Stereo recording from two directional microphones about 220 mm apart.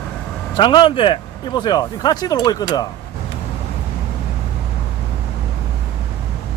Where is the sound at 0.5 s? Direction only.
20° left (ahead or behind).